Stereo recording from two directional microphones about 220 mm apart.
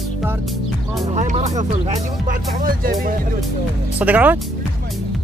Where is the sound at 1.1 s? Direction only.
30° right (ahead or behind).